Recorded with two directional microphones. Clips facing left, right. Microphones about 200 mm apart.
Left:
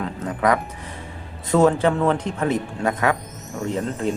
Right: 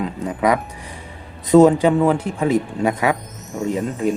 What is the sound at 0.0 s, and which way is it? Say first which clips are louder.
Music: right 2 dB; 10° right (ahead or behind).